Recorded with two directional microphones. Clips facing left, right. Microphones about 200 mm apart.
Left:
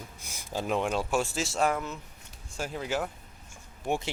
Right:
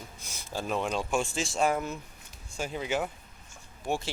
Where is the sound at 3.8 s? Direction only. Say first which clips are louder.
Left 1 dB; 20° left (ahead or behind).